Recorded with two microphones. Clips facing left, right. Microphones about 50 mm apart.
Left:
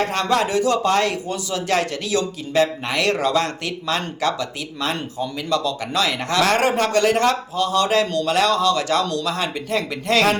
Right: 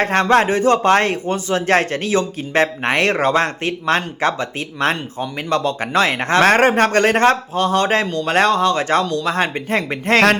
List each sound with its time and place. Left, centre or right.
0.0 s speech: right